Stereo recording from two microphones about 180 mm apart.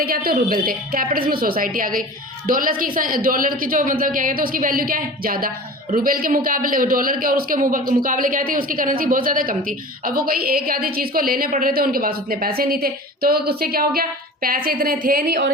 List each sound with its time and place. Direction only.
0.3 s a man's voice: 55° right (ahead or behind)